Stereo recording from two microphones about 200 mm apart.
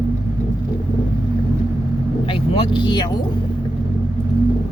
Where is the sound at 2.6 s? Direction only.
25° left (ahead or behind).